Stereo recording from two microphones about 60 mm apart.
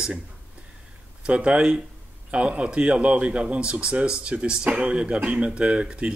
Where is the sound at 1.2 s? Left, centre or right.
Centre.